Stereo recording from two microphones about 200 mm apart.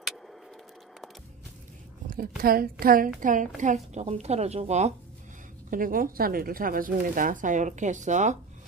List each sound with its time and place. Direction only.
2.0 s a woman's voice: 45° right (ahead or behind)
5.7 s speech: 45° right (ahead or behind)